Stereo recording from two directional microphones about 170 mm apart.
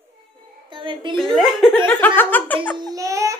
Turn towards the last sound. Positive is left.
turn(degrees=-20)  # may be behind; listen again after turning